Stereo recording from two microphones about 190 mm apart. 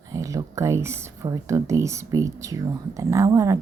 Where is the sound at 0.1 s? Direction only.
15° right (ahead or behind).